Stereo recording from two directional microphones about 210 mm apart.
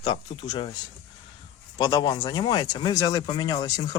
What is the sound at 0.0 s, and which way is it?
Speech, 20° left (ahead or behind).